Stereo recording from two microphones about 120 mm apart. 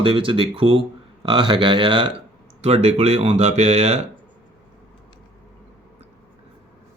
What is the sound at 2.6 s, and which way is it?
Speech, 60° right (ahead or behind).